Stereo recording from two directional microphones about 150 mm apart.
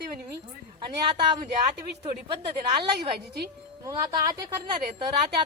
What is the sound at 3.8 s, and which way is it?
Speech, 25° right (ahead or behind).